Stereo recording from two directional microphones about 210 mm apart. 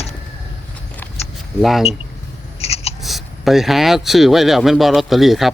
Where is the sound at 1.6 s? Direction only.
Centre (ahead or behind).